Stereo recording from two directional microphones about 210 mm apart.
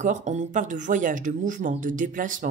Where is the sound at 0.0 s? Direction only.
35° right (ahead or behind).